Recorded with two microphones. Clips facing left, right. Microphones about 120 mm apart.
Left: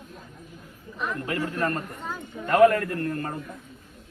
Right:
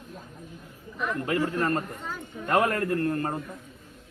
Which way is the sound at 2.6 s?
30° right (ahead or behind).